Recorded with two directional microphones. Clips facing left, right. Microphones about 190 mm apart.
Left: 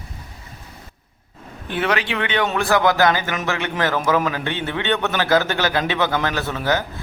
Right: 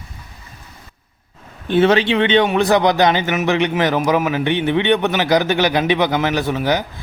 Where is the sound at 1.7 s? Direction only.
25° right (ahead or behind).